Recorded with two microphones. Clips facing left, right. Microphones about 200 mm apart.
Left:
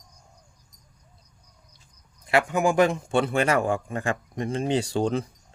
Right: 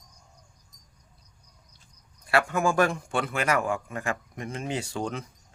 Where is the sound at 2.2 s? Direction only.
20° left (ahead or behind).